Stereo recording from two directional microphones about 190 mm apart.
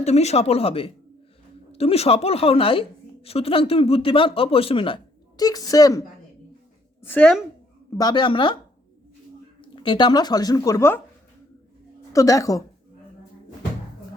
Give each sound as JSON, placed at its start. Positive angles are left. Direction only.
{"t": 0.0, "sound": "a woman's voice", "side_deg": 35}
{"t": 7.9, "sound": "a woman's voice", "side_deg": 20}
{"t": 9.6, "sound": "speech", "side_deg": 25}
{"t": 12.1, "sound": "a woman's voice", "side_deg": 15}